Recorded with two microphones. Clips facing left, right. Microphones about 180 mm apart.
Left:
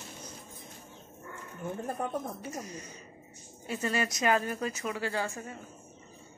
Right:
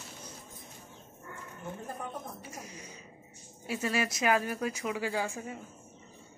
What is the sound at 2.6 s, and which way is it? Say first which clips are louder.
Speech: left 4 dB; 10° right (ahead or behind).